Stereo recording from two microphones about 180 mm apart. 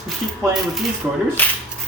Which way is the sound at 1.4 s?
10° left (ahead or behind).